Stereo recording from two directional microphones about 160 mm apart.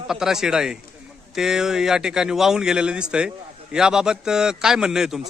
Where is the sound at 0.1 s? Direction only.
5° right (ahead or behind).